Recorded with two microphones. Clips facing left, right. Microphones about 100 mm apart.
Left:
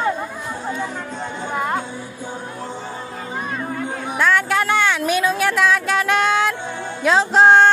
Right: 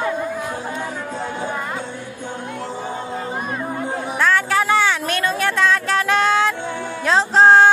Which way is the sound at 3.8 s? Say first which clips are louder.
Right 2 dB; 30° right (ahead or behind).